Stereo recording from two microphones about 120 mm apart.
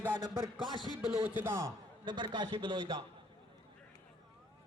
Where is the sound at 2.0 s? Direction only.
40° right (ahead or behind).